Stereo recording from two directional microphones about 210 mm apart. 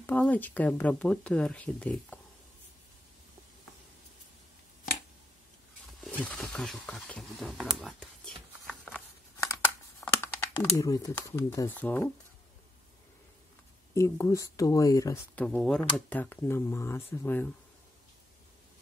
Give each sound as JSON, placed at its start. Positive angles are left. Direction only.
{"t": 0.0, "sound": "speech", "side_deg": 5}
{"t": 6.0, "sound": "speech", "side_deg": 5}
{"t": 8.6, "sound": "a sound", "side_deg": 0}
{"t": 9.9, "sound": "computer keyboard", "side_deg": 10}
{"t": 10.6, "sound": "speech", "side_deg": 15}
{"t": 13.9, "sound": "speech", "side_deg": 15}
{"t": 15.4, "sound": "speech", "side_deg": 5}